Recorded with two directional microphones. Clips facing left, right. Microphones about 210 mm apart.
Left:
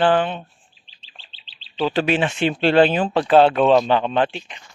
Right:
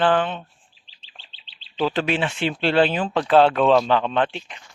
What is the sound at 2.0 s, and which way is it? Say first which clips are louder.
Speech: left 3 dB; 15° left (ahead or behind).